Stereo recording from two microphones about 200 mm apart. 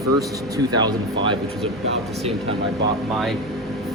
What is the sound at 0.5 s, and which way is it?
Speech, 20° right (ahead or behind).